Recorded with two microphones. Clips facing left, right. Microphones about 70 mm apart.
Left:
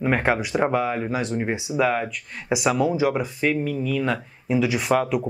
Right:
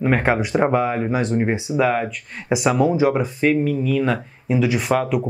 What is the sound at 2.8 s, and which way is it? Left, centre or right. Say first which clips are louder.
Speech: right 4 dB; right.